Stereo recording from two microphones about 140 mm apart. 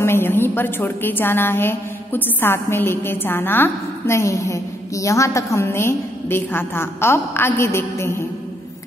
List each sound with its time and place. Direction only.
0.0 s a woman's voice: 15° left (ahead or behind)